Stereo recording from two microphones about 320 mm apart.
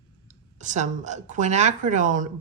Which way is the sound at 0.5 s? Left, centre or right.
Right.